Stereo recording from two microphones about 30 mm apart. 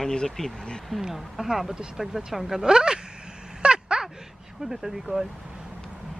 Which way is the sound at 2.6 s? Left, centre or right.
Right.